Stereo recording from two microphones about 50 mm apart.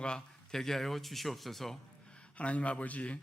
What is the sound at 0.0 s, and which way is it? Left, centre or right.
Speech, centre.